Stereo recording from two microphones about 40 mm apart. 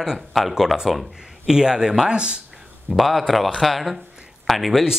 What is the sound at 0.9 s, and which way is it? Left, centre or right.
Speech, centre.